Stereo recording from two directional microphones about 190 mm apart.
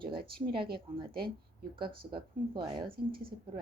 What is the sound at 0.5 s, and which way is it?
Speech, 25° right (ahead or behind).